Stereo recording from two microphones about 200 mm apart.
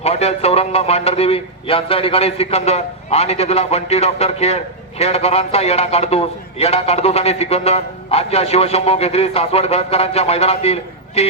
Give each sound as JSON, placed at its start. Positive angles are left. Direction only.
{"t": 0.0, "sound": "speech", "side_deg": 30}